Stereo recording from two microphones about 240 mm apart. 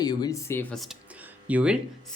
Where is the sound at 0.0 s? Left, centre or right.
Centre.